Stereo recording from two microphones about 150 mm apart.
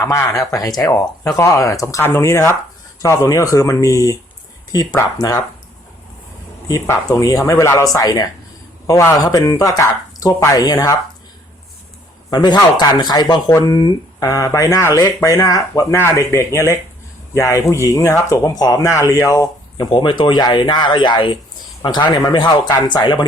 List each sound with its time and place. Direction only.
0.0 s speech: 20° left (ahead or behind)
6.7 s speech: 20° left (ahead or behind)
12.3 s speech: 30° left (ahead or behind)